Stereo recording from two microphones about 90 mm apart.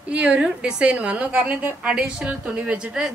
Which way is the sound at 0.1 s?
10° right (ahead or behind).